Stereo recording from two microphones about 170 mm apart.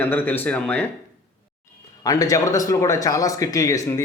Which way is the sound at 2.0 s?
20° left (ahead or behind).